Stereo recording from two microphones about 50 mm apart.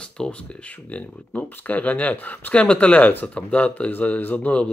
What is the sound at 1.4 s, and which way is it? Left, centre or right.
Speech, left.